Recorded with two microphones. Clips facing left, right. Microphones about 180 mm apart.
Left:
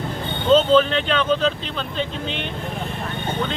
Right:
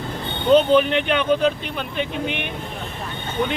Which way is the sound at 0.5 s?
15° right (ahead or behind).